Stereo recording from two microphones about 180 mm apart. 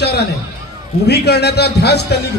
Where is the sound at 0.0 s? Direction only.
65° left (ahead or behind).